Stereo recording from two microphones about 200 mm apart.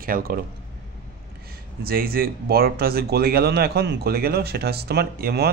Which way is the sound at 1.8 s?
50° right (ahead or behind).